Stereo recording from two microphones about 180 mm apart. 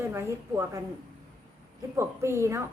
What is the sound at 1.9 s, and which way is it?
Speech, 15° right (ahead or behind).